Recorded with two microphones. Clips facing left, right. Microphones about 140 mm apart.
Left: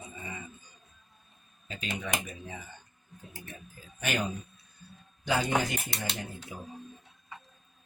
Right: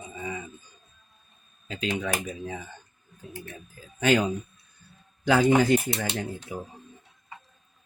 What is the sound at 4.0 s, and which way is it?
Speech, 90° right.